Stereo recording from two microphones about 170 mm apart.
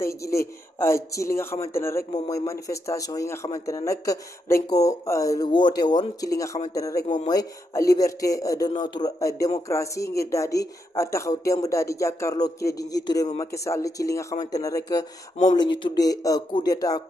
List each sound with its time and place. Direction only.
0.0 s speech: 15° left (ahead or behind)